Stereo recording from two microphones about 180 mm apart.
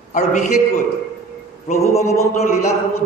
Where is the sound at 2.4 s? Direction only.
40° left (ahead or behind).